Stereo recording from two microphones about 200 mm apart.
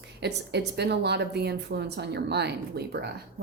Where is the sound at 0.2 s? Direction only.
55° right (ahead or behind).